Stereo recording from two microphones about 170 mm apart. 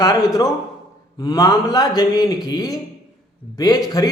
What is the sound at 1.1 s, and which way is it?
A man's voice, 20° left (ahead or behind).